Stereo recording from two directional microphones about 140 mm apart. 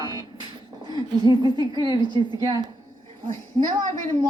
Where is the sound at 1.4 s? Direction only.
30° right (ahead or behind).